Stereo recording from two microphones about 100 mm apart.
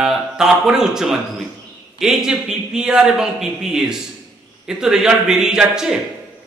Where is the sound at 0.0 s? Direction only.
5° right (ahead or behind).